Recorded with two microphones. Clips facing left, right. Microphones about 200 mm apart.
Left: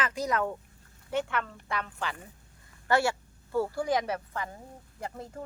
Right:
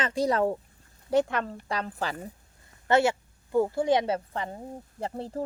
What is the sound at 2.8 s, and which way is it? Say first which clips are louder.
A woman's voice: right 4 dB; 20° right (ahead or behind).